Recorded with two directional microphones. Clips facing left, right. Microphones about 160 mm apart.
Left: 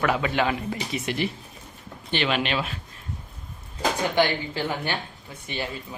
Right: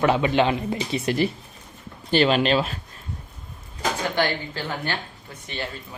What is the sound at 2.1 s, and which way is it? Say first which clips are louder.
Speech: right 6 dB; 35° right (ahead or behind).